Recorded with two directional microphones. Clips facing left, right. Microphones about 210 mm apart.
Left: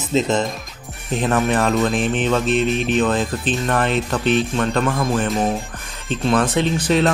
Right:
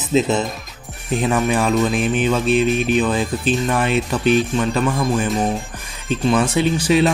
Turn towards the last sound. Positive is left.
turn(degrees=-5)  # may be behind; listen again after turning